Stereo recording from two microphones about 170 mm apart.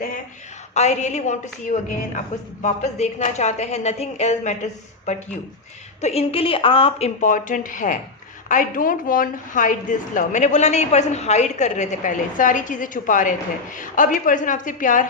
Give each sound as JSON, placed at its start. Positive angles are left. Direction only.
{"t": 0.7, "sound": "a woman's voice", "side_deg": 40}
{"t": 7.2, "sound": "a woman's voice", "side_deg": 50}